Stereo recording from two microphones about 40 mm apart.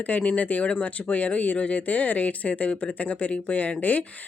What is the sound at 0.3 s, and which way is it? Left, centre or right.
Speech, left.